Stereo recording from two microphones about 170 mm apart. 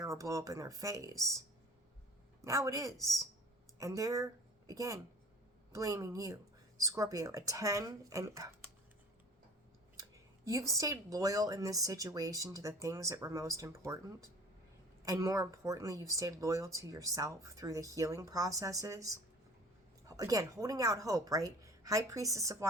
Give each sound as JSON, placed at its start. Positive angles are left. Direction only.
{"t": 0.0, "sound": "speech", "side_deg": -20}
{"t": 2.4, "sound": "speech", "side_deg": -15}
{"t": 10.0, "sound": "speech", "side_deg": -20}
{"t": 15.0, "sound": "speech", "side_deg": -20}